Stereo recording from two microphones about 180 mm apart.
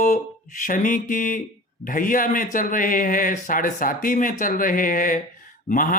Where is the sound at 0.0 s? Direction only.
45° left (ahead or behind).